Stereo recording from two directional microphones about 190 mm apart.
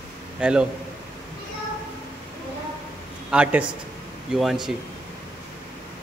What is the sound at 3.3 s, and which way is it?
A man's voice, 5° right (ahead or behind).